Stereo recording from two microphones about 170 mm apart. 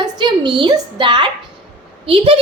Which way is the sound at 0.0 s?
25° right (ahead or behind).